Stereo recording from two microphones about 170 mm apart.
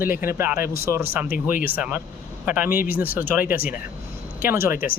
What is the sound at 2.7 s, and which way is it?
Speech, 55° left (ahead or behind).